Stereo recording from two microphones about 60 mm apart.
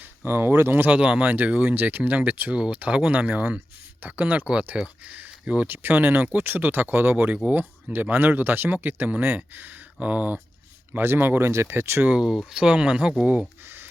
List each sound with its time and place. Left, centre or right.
0.3 s speech: right
0.9 s speech: right
1.7 s speech: right
5.6 s speech: right
10.9 s speech: right
12.5 s speech: centre